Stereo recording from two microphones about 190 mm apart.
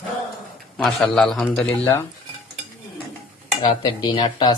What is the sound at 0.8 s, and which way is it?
A man's voice, centre (ahead or behind).